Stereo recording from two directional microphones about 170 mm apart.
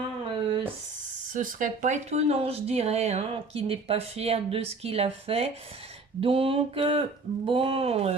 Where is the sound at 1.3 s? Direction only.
50° right (ahead or behind).